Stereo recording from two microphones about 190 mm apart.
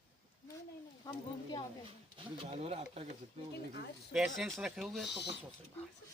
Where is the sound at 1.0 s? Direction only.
20° left (ahead or behind).